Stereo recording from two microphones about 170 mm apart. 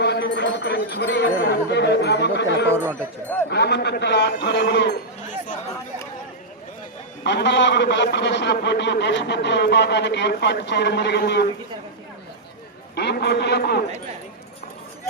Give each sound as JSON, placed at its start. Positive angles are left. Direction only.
{"t": 0.0, "sound": "speech", "side_deg": 85}
{"t": 3.5, "sound": "speech", "side_deg": 75}
{"t": 7.3, "sound": "a man's voice", "side_deg": 90}
{"t": 13.0, "sound": "a man's voice", "side_deg": 75}